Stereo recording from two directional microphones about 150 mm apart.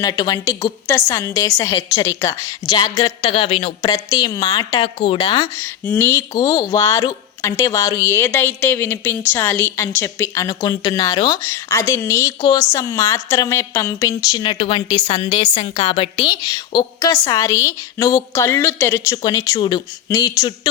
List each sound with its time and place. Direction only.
0.0 s speech: 25° left (ahead or behind); by 3.8 s 40° left (ahead or behind)
3.8 s speech: 25° left (ahead or behind)
5.5 s a woman's voice: 15° left (ahead or behind)